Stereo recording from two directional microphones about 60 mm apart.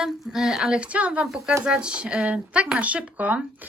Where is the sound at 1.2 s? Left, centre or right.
Centre.